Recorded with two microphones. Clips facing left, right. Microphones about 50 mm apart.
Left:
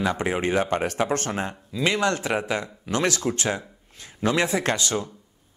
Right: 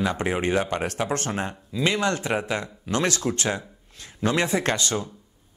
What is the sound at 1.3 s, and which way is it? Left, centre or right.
Speech, left.